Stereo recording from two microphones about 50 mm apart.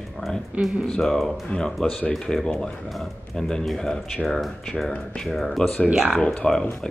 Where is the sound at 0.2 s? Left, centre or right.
Left.